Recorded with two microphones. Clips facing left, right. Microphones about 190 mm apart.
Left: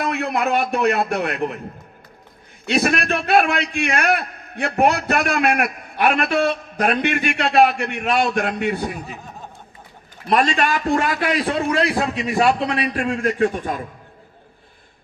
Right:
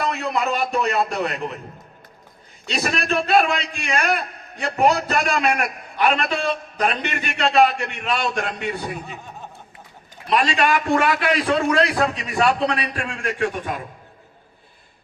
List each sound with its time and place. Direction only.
0.0 s a man's voice: 55° left (ahead or behind)
2.6 s a man's voice: 60° left (ahead or behind)
9.0 s speech: centre (ahead or behind)
10.2 s a man's voice: 45° left (ahead or behind)